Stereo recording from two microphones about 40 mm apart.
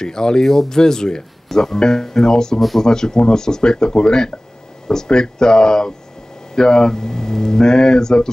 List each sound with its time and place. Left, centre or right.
0.0 s speech: centre